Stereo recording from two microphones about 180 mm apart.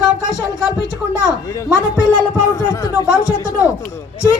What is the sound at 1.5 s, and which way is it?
Speech, 20° left (ahead or behind).